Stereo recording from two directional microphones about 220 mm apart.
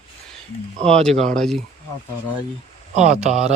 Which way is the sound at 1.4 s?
Centre (ahead or behind).